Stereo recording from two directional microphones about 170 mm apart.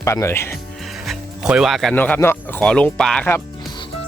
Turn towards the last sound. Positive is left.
turn(degrees=10)  # may be behind; listen again after turning